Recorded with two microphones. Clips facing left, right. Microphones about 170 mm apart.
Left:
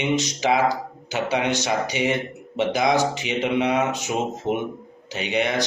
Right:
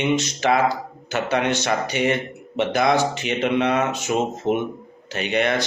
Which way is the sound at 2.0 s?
55° right (ahead or behind).